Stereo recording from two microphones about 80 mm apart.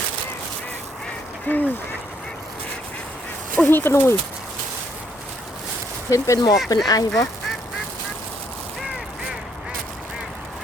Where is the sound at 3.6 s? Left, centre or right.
Left.